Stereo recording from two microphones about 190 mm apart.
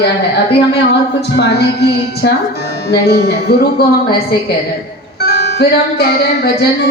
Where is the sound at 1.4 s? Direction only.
60° left (ahead or behind).